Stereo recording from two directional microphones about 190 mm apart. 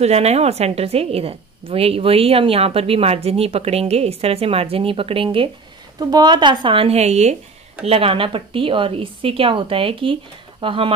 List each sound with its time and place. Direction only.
0.0 s a woman's voice: 35° right (ahead or behind)